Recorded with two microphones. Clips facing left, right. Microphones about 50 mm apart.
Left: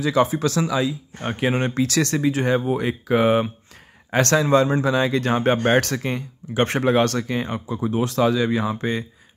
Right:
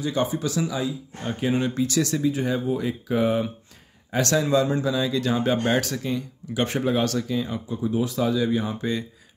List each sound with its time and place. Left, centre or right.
0.0 s a man's voice: left
1.8 s speech: left
2.0 s speech: left
4.2 s a man's voice: left
6.8 s speech: left